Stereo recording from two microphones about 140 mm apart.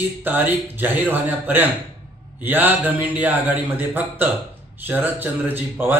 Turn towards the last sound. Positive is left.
turn(degrees=-15)  # may be behind; listen again after turning